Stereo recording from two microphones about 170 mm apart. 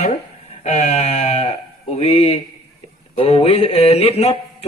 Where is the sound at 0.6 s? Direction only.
40° left (ahead or behind).